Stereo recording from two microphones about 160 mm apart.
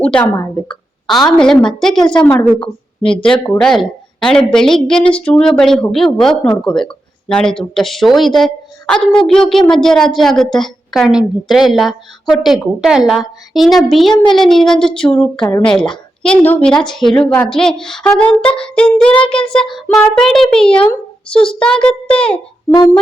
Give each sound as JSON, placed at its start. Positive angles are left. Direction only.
{"t": 0.0, "sound": "a child's voice", "side_deg": 10}
{"t": 1.4, "sound": "speech", "side_deg": 5}
{"t": 2.6, "sound": "a woman's voice", "side_deg": 35}
{"t": 3.4, "sound": "a child's voice", "side_deg": 5}